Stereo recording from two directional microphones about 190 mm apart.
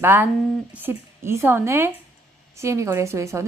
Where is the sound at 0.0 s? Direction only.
10° right (ahead or behind).